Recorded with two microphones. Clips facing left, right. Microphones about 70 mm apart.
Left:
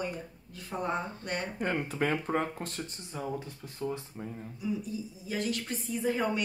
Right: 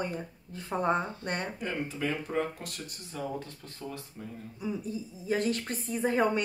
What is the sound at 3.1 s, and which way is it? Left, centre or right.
Speech, centre.